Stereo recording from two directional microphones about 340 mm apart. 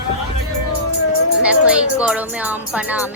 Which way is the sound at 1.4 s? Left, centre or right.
Centre.